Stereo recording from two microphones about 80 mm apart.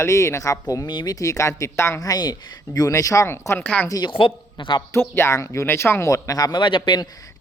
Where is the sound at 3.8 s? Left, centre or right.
Left.